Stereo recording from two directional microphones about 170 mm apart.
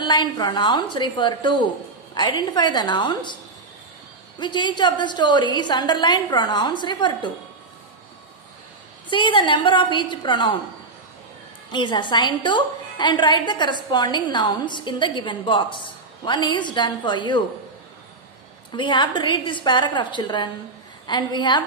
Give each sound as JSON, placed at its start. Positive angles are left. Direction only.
{"t": 0.0, "sound": "a woman's voice", "side_deg": 25}
{"t": 4.4, "sound": "a woman's voice", "side_deg": 25}
{"t": 9.1, "sound": "a woman's voice", "side_deg": 30}
{"t": 11.7, "sound": "a woman's voice", "side_deg": 25}
{"t": 18.7, "sound": "a woman's voice", "side_deg": 25}